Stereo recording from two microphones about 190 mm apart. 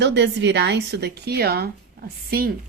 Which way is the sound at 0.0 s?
65° right (ahead or behind).